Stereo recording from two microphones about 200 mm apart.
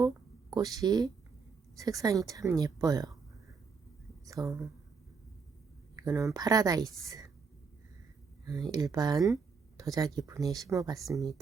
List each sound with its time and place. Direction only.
0.5 s speech: 20° right (ahead or behind)
4.3 s speech: 15° right (ahead or behind)
6.0 s speech: 15° right (ahead or behind)
8.4 s speech: 20° right (ahead or behind)